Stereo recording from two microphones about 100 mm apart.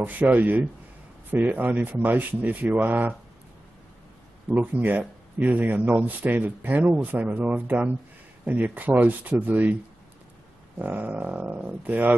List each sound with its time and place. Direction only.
0.0 s speech: 15° right (ahead or behind)
4.5 s speech: 15° right (ahead or behind)
10.8 s speech: 15° right (ahead or behind)